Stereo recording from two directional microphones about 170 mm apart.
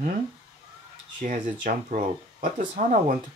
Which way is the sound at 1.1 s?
50° right (ahead or behind).